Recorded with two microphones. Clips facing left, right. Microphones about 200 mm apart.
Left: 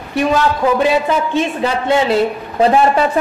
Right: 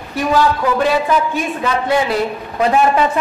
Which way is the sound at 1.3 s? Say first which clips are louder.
Left 3 dB; 25° left (ahead or behind).